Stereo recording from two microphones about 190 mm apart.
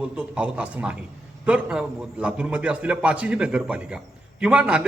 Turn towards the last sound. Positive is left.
turn(degrees=-5)  # may be behind; listen again after turning